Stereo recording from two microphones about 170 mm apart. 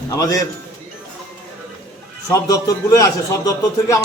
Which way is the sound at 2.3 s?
20° left (ahead or behind).